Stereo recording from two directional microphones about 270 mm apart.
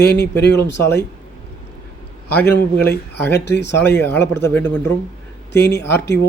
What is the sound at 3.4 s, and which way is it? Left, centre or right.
Speech, left.